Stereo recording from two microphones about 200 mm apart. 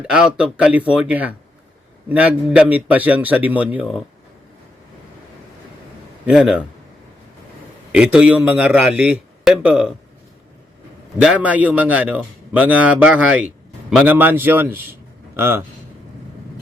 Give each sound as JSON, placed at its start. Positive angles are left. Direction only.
{"t": 0.0, "sound": "a man's voice", "side_deg": -5}
{"t": 6.2, "sound": "speech", "side_deg": -5}
{"t": 7.9, "sound": "speech", "side_deg": -5}
{"t": 11.2, "sound": "a man's voice", "side_deg": -5}